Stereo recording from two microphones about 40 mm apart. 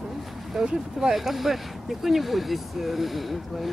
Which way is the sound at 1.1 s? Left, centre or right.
Centre.